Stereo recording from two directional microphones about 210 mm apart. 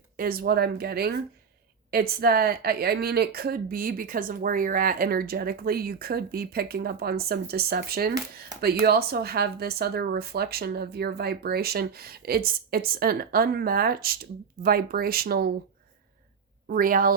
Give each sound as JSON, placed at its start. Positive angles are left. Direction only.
{"t": 0.2, "sound": "speech", "side_deg": -45}
{"t": 16.6, "sound": "speech", "side_deg": -45}